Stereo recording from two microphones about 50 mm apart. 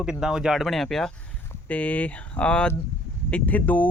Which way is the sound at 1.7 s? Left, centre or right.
Left.